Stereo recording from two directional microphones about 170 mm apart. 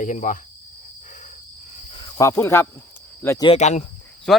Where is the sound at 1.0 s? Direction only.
45° left (ahead or behind); by 2.7 s 15° left (ahead or behind).